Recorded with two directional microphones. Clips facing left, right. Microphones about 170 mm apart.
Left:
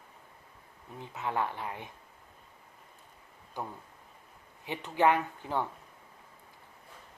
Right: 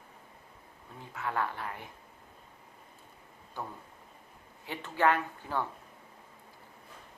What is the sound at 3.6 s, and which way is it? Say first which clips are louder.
Speech: left 1 dB; 15° left (ahead or behind).